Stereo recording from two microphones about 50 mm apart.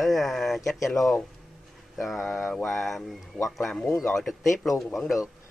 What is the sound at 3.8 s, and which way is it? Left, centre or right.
Speech, left.